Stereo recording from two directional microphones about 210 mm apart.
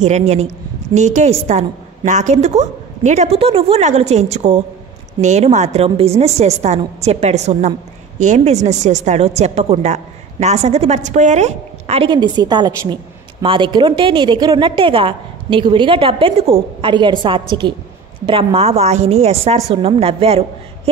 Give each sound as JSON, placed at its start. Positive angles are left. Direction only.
{"t": 0.0, "sound": "a woman's voice", "side_deg": -30}